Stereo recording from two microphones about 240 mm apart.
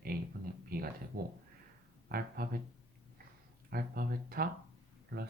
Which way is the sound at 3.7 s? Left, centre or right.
Right.